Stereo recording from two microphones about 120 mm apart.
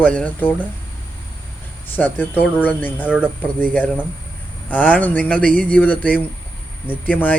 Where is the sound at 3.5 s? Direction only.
15° left (ahead or behind).